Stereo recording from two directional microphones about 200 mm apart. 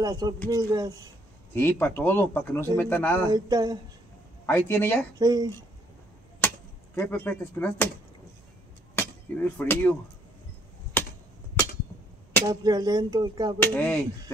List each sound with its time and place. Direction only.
0.0 s speech: 20° right (ahead or behind)
1.5 s speech: 10° left (ahead or behind)
3.3 s speech: 20° right (ahead or behind)
4.5 s speech: 10° left (ahead or behind)
5.2 s speech: 20° right (ahead or behind)
6.4 s a sound: 10° left (ahead or behind)
7.0 s speech: 10° left (ahead or behind)
8.9 s speech: 10° left (ahead or behind)
12.4 s speech: 20° right (ahead or behind)
13.6 s speech: 10° left (ahead or behind)